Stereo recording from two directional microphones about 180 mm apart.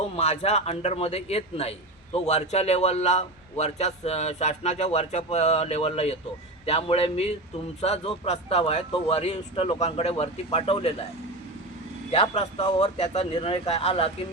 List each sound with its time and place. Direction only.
0.2 s a man's voice: 35° left (ahead or behind)
12.1 s a man's voice: 35° left (ahead or behind)